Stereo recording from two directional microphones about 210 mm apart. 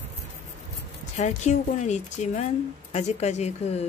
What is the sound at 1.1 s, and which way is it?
Speech, 35° left (ahead or behind).